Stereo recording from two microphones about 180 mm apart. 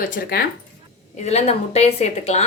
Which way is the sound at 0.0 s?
55° left (ahead or behind).